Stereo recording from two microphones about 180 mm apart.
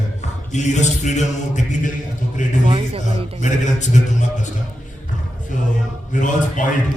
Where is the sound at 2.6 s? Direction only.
30° right (ahead or behind).